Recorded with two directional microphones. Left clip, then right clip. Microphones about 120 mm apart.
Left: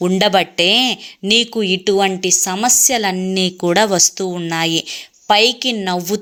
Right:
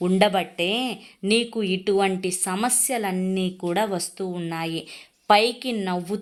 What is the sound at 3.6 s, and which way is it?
A woman's voice, 45° left (ahead or behind).